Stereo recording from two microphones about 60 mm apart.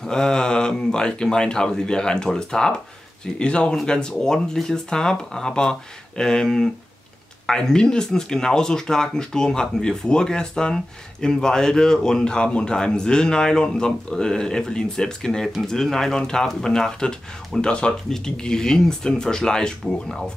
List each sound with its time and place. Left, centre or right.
0.0 s speech: centre